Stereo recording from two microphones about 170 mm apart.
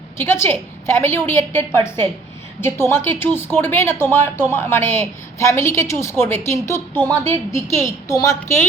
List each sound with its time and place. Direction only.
0.2 s speech: 15° left (ahead or behind)